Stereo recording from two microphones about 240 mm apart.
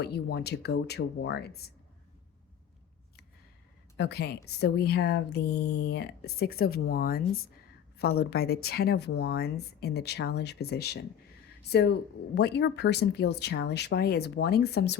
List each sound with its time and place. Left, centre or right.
0.0 s speech: left
3.9 s speech: left
12.3 s speech: left